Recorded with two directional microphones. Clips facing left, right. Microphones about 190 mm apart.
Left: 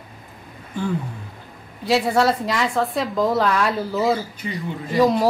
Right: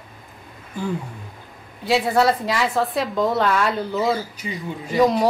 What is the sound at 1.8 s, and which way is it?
A woman's voice, centre (ahead or behind).